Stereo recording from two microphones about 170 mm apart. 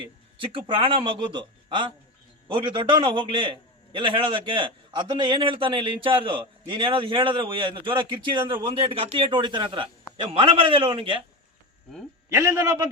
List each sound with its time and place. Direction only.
0.0 s a man's voice: 30° right (ahead or behind)
12.3 s a man's voice: 20° right (ahead or behind)